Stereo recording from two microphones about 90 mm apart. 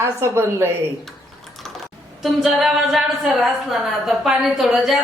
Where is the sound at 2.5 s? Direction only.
Centre (ahead or behind).